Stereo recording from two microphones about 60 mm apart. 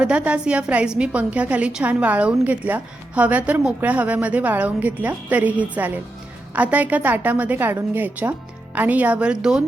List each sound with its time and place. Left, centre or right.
0.0 s a woman's voice: centre